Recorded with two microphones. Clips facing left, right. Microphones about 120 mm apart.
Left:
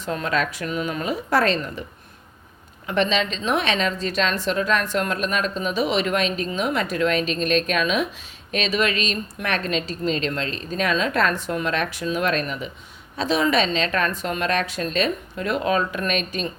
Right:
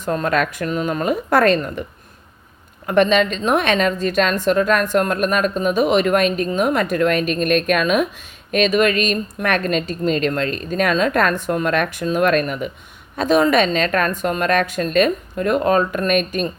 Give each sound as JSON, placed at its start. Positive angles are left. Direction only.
{"t": 0.0, "sound": "a woman's voice", "side_deg": -45}
{"t": 2.8, "sound": "a woman's voice", "side_deg": -50}